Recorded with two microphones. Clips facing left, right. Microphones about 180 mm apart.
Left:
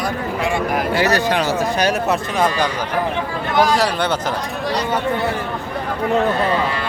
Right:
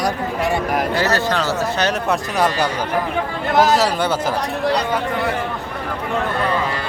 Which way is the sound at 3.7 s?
10° right (ahead or behind).